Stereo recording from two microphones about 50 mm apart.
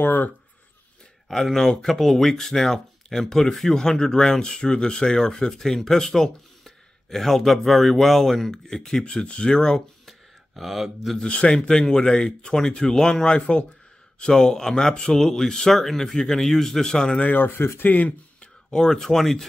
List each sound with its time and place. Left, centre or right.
0.0 s speech: left
1.3 s speech: centre
9.0 s speech: centre
10.0 s speech: centre
11.2 s a man's voice: left
17.2 s speech: left
18.4 s speech: centre